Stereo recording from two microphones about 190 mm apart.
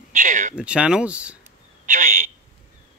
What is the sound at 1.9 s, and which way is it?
Telephone, 45° right (ahead or behind).